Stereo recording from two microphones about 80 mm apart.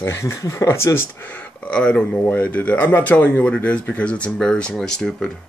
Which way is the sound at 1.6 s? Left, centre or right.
Centre.